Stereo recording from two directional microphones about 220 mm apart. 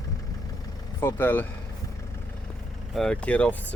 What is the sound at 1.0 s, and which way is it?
Speech, 10° left (ahead or behind).